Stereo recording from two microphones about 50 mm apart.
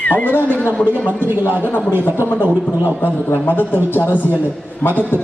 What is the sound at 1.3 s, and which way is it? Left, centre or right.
Speech, right.